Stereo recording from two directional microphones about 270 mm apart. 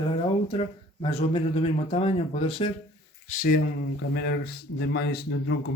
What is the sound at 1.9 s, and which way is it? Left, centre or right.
Speech, left.